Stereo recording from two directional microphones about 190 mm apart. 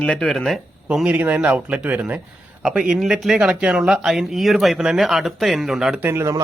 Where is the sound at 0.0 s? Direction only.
5° left (ahead or behind).